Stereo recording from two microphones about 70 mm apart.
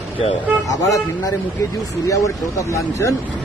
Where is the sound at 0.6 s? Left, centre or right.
Left.